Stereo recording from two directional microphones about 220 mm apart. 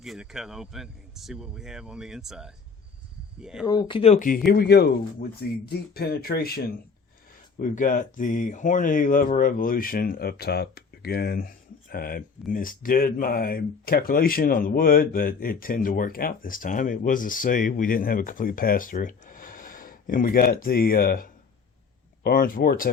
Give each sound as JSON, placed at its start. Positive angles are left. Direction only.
{"t": 0.0, "sound": "speech", "side_deg": 0}
{"t": 3.7, "sound": "speech", "side_deg": 20}
{"t": 4.5, "sound": "speech", "side_deg": 45}
{"t": 7.6, "sound": "speech", "side_deg": 35}